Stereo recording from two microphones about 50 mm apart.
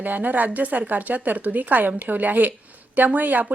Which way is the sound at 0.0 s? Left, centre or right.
Right.